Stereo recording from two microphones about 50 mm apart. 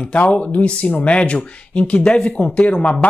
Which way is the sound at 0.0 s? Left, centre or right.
Left.